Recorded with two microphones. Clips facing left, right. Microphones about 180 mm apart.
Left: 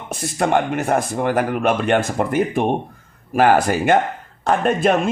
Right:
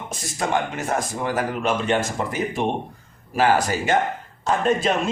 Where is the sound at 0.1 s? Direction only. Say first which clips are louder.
Left 6 dB; 60° left (ahead or behind).